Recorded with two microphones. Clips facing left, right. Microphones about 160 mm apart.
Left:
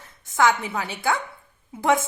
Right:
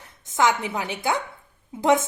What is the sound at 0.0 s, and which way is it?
A woman's voice, 15° right (ahead or behind).